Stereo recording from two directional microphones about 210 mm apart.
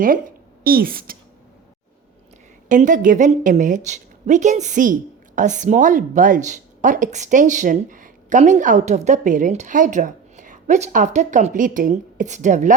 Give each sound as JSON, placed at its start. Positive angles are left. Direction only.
{"t": 0.0, "sound": "speech", "side_deg": -40}
{"t": 2.6, "sound": "speech", "side_deg": -40}